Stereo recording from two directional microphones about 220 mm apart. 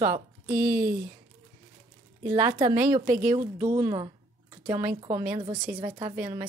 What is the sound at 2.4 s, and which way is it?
A woman's voice, 15° right (ahead or behind).